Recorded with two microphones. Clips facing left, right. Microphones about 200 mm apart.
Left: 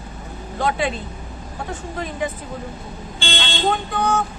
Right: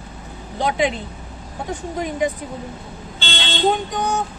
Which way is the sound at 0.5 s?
15° right (ahead or behind).